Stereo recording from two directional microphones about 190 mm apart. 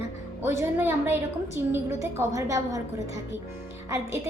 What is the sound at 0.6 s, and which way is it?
A woman's voice, 10° right (ahead or behind).